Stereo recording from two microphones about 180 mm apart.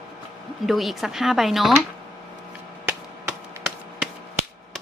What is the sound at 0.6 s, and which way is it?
Speech, centre (ahead or behind).